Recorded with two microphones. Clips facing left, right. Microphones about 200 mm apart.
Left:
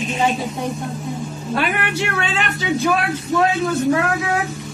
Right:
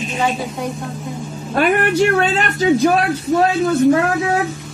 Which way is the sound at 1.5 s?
45° right (ahead or behind).